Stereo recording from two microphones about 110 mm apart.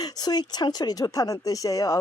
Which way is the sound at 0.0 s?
40° left (ahead or behind).